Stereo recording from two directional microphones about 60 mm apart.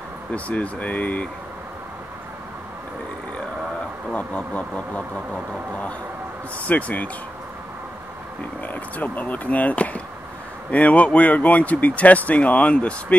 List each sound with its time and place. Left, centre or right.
0.3 s speech: left
4.1 s speech: left
6.7 s speech: left
8.6 s speech: left